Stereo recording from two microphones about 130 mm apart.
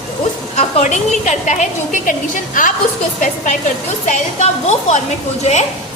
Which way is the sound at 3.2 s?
65° left (ahead or behind).